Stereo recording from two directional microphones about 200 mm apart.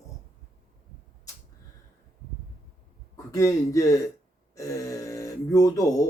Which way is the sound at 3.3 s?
15° left (ahead or behind).